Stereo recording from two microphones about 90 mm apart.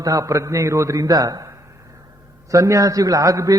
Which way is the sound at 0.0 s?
40° right (ahead or behind).